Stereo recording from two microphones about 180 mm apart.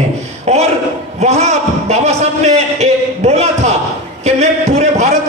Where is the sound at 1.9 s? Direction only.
40° right (ahead or behind).